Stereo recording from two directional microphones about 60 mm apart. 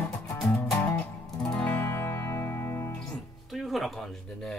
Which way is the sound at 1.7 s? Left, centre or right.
Left.